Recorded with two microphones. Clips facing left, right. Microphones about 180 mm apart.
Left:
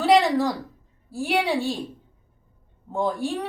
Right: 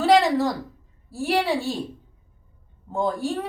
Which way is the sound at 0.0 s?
Centre (ahead or behind).